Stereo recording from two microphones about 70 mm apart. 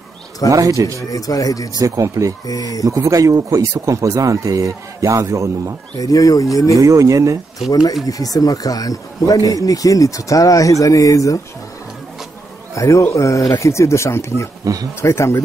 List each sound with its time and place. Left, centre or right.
0.5 s speech: right
0.9 s speech: left
1.8 s speech: right
2.4 s speech: left
2.8 s speech: right
5.9 s speech: left
6.8 s speech: right
8.1 s speech: left
12.7 s speech: left
14.6 s speech: right
15.0 s speech: left